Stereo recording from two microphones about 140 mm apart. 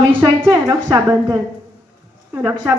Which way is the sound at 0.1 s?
20° right (ahead or behind).